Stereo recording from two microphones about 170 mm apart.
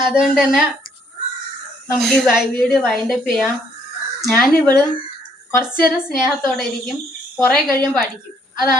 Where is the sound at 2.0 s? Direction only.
5° left (ahead or behind).